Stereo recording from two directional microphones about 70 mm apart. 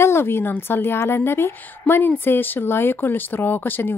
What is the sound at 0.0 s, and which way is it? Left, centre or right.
A woman's voice, left.